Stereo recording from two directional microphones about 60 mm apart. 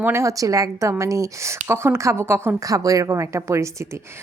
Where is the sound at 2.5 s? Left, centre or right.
Right.